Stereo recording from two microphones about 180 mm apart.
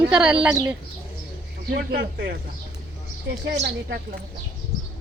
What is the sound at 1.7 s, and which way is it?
Speech, 60° right (ahead or behind).